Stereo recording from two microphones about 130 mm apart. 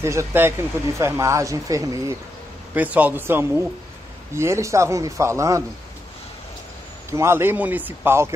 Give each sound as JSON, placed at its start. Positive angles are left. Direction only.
{"t": 0.0, "sound": "speech", "side_deg": -20}
{"t": 2.7, "sound": "a man's voice", "side_deg": -10}
{"t": 7.1, "sound": "a man's voice", "side_deg": -20}